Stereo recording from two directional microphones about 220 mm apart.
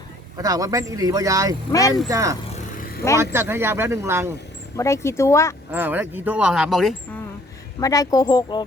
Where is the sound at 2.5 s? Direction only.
40° left (ahead or behind).